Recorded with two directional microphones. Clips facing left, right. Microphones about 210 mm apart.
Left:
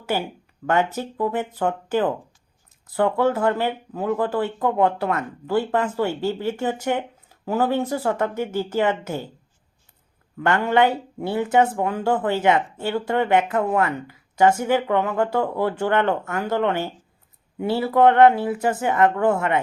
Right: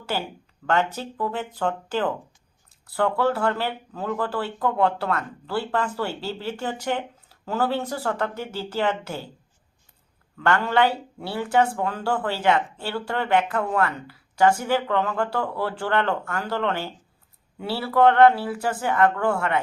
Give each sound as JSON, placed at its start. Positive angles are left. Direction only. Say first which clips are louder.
{"t": 0.0, "sound": "speech", "louder": "left 4 dB", "side_deg": 15}
{"t": 10.4, "sound": "speech", "louder": "left 2 dB", "side_deg": 15}